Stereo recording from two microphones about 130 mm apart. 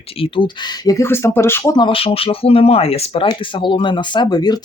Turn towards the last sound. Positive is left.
turn(degrees=35)  # may be behind; listen again after turning